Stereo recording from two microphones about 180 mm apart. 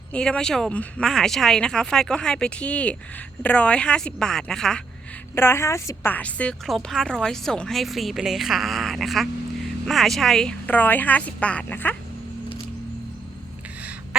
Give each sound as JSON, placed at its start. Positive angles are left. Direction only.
{"t": 0.1, "sound": "a woman's voice", "side_deg": 5}